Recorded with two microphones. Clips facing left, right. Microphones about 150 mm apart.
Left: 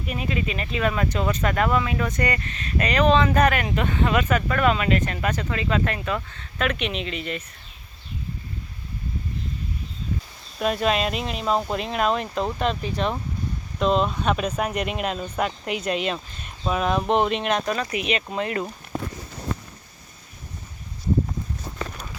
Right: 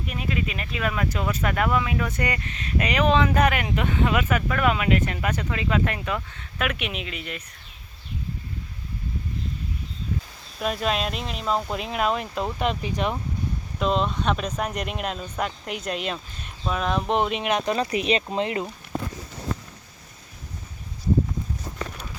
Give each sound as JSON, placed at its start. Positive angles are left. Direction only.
{"t": 0.1, "sound": "speech", "side_deg": 0}
{"t": 10.6, "sound": "speech", "side_deg": 0}
{"t": 13.7, "sound": "speech", "side_deg": 0}
{"t": 17.7, "sound": "speech", "side_deg": -30}